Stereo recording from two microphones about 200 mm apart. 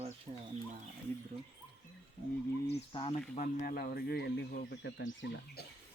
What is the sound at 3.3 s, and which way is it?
Speech, 40° left (ahead or behind).